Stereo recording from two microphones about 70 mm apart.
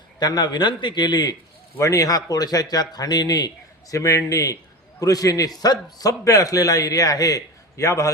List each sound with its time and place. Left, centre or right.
0.2 s a man's voice: left
1.8 s a man's voice: left